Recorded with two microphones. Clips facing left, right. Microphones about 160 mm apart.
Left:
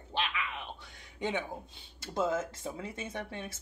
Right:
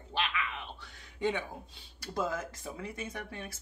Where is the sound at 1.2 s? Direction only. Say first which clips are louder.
Right 1 dB; 20° left (ahead or behind).